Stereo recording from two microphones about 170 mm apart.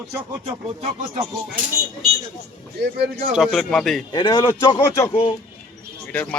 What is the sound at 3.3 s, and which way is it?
Speech, centre (ahead or behind).